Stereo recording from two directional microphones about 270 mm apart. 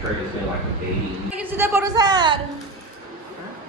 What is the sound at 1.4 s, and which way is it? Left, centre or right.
A woman's voice, centre.